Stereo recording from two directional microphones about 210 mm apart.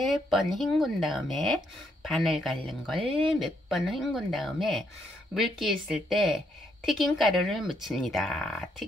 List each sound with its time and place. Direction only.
0.0 s speech: centre (ahead or behind)